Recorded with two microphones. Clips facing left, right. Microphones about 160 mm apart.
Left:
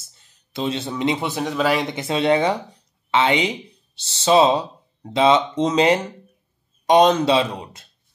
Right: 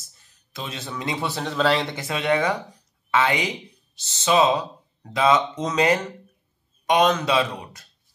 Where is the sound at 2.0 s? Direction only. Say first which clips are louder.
Left 4 dB; 30° left (ahead or behind).